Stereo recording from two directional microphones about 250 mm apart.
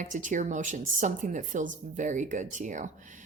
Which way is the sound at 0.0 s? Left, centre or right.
Right.